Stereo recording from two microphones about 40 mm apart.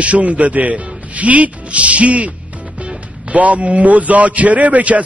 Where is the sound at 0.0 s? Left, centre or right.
Right.